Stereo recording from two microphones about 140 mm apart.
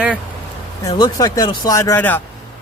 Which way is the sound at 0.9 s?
30° left (ahead or behind).